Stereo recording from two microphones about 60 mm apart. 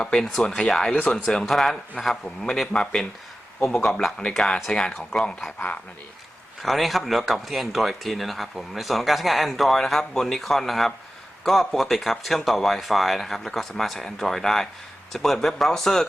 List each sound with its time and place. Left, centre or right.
0.0 s speech: centre
2.2 s speech: centre
5.5 s speech: left
6.6 s speech: centre